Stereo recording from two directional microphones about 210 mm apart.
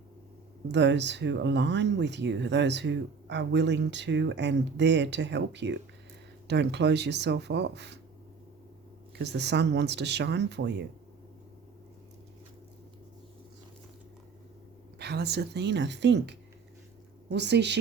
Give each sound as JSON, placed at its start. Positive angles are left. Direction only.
{"t": 0.7, "sound": "speech", "side_deg": -55}
{"t": 9.1, "sound": "speech", "side_deg": -55}
{"t": 14.9, "sound": "speech", "side_deg": -50}